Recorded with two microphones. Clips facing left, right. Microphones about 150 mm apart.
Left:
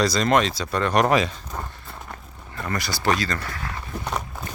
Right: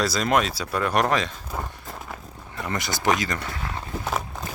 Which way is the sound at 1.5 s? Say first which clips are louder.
Right 4 dB; 10° right (ahead or behind).